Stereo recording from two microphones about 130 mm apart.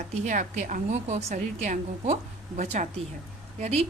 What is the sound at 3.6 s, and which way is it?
Speech, 55° right (ahead or behind).